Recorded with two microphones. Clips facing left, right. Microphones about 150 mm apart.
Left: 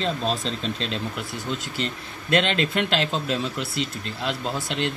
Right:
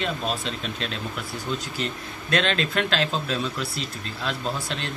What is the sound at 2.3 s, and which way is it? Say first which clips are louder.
Speech: left 2 dB; 20° left (ahead or behind).